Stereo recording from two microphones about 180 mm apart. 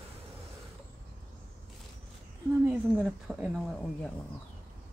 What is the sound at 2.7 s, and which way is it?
Speech, 5° right (ahead or behind).